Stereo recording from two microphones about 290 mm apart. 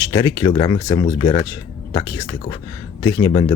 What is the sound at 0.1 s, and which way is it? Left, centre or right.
Speech, centre.